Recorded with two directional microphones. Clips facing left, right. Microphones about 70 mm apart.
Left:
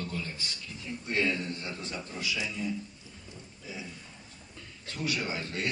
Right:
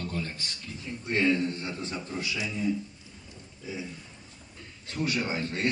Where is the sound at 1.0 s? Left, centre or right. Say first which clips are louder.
Right 5 dB; right.